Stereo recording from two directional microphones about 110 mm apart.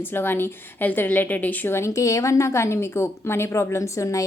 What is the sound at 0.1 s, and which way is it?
A woman's voice, 20° left (ahead or behind).